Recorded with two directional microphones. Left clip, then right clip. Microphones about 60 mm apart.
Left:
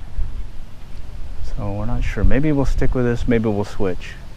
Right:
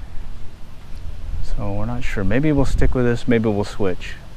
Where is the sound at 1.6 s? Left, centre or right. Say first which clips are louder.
Even; centre.